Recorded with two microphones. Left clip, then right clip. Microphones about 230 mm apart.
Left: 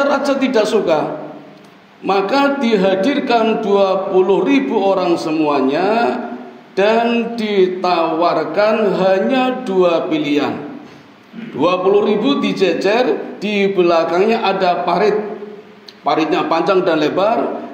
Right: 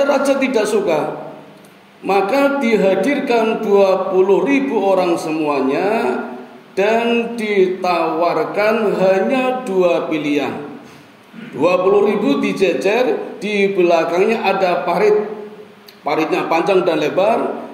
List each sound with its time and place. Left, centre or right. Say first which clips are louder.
0.0 s speech: right 1 dB; left
2.0 s speech: even; left
11.6 s speech: even; left